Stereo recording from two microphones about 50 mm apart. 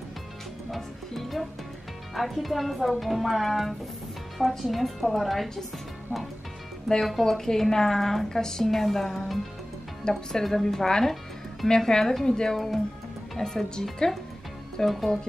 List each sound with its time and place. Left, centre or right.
0.7 s speech: centre
6.9 s a woman's voice: centre
10.0 s a woman's voice: centre